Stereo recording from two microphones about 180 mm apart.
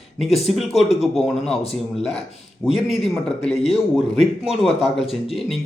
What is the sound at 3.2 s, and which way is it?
Speech, 35° left (ahead or behind).